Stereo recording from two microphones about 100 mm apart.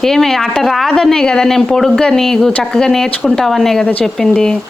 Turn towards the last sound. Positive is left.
turn(degrees=5)  # may be behind; listen again after turning